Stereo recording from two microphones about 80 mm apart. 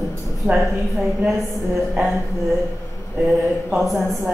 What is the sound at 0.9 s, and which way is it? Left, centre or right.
A man's voice, centre.